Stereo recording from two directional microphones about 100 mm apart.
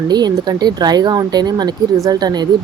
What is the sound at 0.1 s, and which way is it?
Speech, 45° right (ahead or behind).